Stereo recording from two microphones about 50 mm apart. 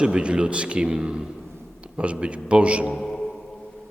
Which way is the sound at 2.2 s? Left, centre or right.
Right.